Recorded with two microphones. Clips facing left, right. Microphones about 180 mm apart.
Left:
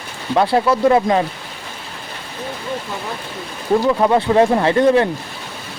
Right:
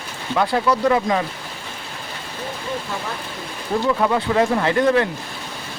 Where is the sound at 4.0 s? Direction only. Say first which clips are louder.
Left 5 dB; 25° left (ahead or behind).